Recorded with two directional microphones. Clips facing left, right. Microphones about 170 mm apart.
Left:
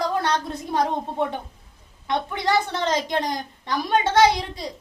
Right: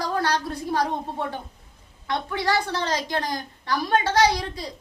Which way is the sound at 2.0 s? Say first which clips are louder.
Left 1 dB; 20° left (ahead or behind).